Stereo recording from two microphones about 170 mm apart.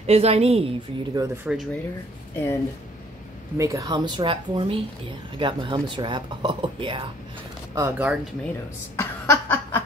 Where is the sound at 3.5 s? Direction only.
20° right (ahead or behind).